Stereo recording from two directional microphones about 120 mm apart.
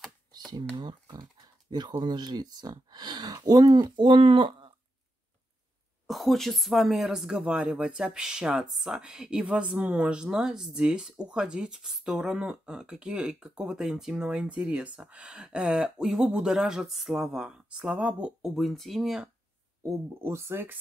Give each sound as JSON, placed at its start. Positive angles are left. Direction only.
{"t": 0.7, "sound": "speech", "side_deg": -35}
{"t": 6.0, "sound": "speech", "side_deg": 0}
{"t": 19.8, "sound": "speech", "side_deg": -25}